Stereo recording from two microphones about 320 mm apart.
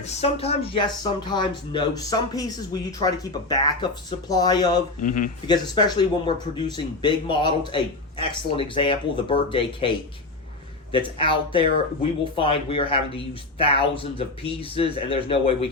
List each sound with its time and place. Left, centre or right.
0.0 s speech: centre
4.9 s speech: left
5.5 s speech: centre
10.9 s speech: centre